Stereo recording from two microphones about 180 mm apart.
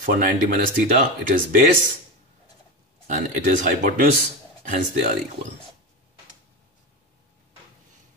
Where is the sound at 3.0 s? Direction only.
45° right (ahead or behind).